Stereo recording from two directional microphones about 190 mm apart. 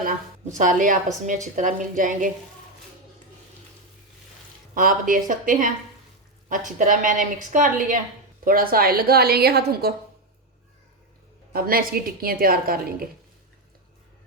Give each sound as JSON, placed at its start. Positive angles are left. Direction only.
{"t": 0.0, "sound": "a woman's voice", "side_deg": -40}
{"t": 4.7, "sound": "a woman's voice", "side_deg": -45}
{"t": 11.5, "sound": "a woman's voice", "side_deg": -50}